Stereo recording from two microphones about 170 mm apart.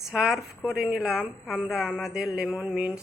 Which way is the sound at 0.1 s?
5° right (ahead or behind).